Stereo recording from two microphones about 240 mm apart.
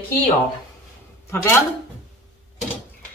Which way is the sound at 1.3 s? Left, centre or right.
Centre.